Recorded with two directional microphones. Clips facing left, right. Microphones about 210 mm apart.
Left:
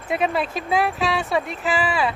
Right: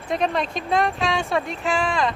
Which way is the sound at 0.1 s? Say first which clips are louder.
Left 1 dB; 5° left (ahead or behind).